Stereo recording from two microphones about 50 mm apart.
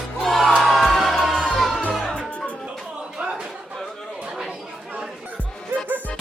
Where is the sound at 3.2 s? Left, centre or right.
Centre.